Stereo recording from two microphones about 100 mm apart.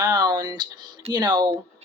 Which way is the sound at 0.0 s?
45° right (ahead or behind).